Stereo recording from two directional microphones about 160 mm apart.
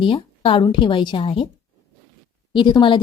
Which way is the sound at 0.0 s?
30° left (ahead or behind).